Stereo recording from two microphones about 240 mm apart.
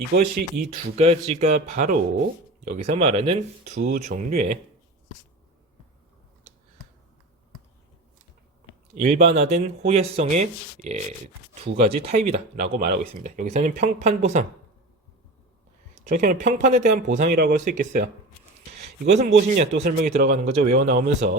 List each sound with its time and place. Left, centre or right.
0.1 s speech: right
0.9 s speech: right
9.0 s speech: right
12.6 s speech: right
16.0 s speech: right
19.2 s speech: right